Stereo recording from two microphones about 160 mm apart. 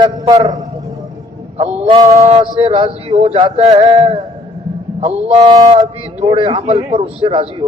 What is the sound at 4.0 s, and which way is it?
A man's voice, 30° right (ahead or behind).